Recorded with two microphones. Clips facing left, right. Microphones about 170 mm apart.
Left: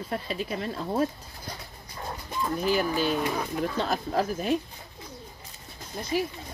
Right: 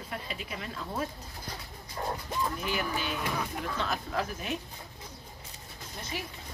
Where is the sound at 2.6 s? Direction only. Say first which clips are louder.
Left 8 dB; 35° left (ahead or behind).